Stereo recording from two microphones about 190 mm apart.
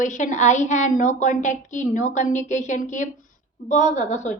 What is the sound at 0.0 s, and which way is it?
A woman's voice, 40° left (ahead or behind).